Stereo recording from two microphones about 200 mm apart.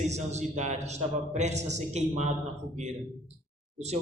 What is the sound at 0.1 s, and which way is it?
A woman's voice, 35° right (ahead or behind).